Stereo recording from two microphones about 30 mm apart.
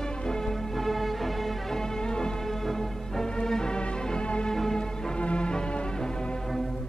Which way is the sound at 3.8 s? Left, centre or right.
Left.